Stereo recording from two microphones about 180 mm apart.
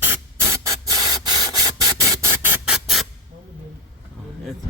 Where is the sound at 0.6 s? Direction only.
20° right (ahead or behind).